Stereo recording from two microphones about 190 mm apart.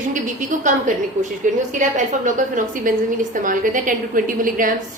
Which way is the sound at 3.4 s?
45° right (ahead or behind).